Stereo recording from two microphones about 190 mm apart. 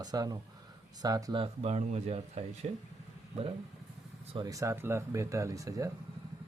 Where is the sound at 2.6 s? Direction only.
45° right (ahead or behind).